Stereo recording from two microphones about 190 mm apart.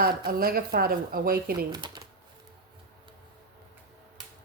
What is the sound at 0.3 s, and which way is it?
Speech, 50° right (ahead or behind).